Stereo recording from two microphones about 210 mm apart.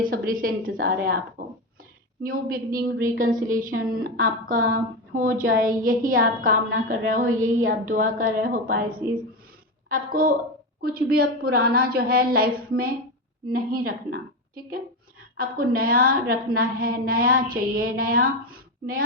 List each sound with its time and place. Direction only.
0.0 s a woman's voice: 40° right (ahead or behind)
1.4 s a sound: 40° right (ahead or behind)
2.2 s a woman's voice: 45° right (ahead or behind)
9.9 s a woman's voice: 45° right (ahead or behind)